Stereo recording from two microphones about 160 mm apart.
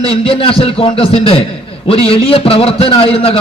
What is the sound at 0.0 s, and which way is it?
A man's voice, 35° left (ahead or behind).